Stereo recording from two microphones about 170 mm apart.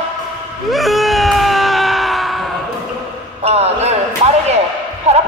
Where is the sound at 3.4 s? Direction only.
40° right (ahead or behind).